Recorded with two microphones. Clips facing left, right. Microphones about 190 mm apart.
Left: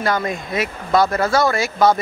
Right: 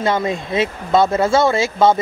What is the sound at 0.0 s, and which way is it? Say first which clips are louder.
Speech: right 2 dB; 25° right (ahead or behind).